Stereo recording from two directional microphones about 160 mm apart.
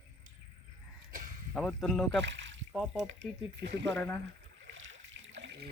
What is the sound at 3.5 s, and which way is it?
Speech, 90° right.